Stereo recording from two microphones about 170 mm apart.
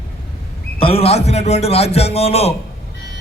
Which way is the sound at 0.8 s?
35° left (ahead or behind).